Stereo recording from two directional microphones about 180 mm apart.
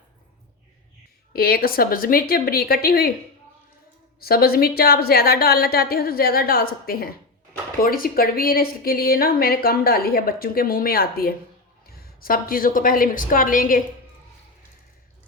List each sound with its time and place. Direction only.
1.3 s a woman's voice: 55° left (ahead or behind)
4.2 s a woman's voice: 55° left (ahead or behind)